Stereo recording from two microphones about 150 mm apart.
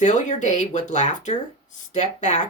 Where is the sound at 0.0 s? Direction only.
55° left (ahead or behind).